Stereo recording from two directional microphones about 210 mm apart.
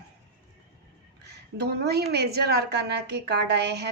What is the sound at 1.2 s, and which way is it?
A woman's voice, 50° right (ahead or behind).